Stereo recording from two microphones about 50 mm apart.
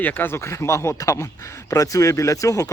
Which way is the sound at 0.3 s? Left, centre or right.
Left.